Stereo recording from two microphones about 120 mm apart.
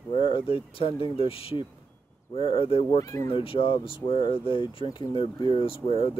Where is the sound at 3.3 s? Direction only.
50° left (ahead or behind).